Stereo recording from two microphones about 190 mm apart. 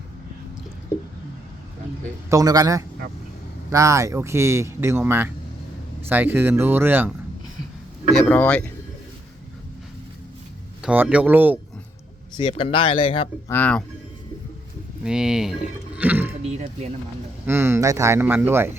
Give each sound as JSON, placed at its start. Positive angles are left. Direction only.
{"t": 2.3, "sound": "a man's voice", "side_deg": -20}
{"t": 8.2, "sound": "speech", "side_deg": 10}
{"t": 10.8, "sound": "speech", "side_deg": -10}
{"t": 12.4, "sound": "speech", "side_deg": 25}
{"t": 13.5, "sound": "speech", "side_deg": 10}
{"t": 15.0, "sound": "speech", "side_deg": -5}
{"t": 17.4, "sound": "speech", "side_deg": -10}